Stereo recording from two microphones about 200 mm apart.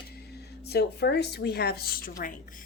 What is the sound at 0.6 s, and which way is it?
Speech, 55° left (ahead or behind).